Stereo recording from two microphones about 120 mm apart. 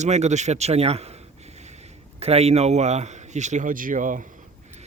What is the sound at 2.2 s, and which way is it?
Speech, 60° right (ahead or behind).